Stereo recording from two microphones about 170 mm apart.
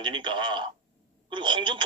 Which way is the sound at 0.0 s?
30° right (ahead or behind).